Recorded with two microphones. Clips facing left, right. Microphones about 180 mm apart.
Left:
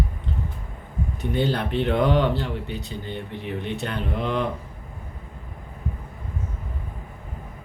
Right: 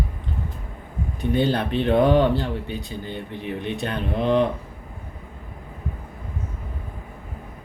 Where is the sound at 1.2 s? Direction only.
15° right (ahead or behind).